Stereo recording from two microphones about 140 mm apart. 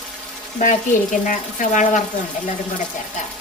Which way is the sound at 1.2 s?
70° left (ahead or behind).